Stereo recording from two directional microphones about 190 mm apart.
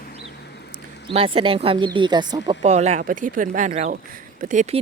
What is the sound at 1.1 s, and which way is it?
Speech, 30° right (ahead or behind).